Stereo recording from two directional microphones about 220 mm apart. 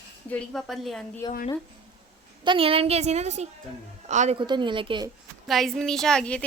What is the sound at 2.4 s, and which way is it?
A woman's voice, 25° right (ahead or behind).